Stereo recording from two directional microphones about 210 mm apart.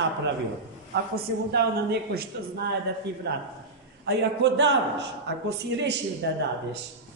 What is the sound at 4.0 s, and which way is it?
A man's voice, 55° right (ahead or behind).